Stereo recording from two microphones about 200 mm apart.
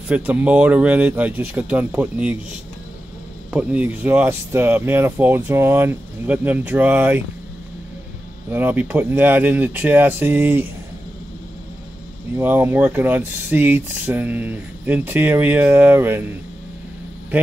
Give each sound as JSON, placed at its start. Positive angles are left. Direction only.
{"t": 0.1, "sound": "speech", "side_deg": -5}
{"t": 3.5, "sound": "speech", "side_deg": -5}
{"t": 8.5, "sound": "speech", "side_deg": -10}
{"t": 12.4, "sound": "speech", "side_deg": -10}